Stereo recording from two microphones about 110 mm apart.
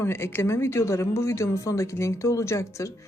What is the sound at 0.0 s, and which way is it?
A woman's voice, 25° left (ahead or behind).